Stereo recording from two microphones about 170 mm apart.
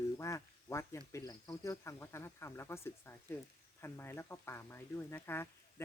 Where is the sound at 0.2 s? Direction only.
20° left (ahead or behind).